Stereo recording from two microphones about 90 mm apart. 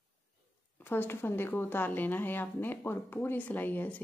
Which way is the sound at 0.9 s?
25° left (ahead or behind).